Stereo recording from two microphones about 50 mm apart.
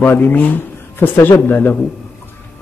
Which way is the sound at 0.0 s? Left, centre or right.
Left.